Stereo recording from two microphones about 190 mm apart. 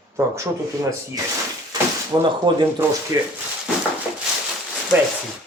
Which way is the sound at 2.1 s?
15° right (ahead or behind).